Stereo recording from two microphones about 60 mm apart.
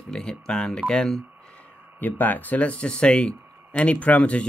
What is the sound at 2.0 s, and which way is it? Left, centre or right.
Speech, left.